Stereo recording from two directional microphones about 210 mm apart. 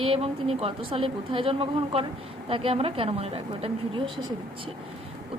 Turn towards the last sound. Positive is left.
turn(degrees=-25)  # may be behind; listen again after turning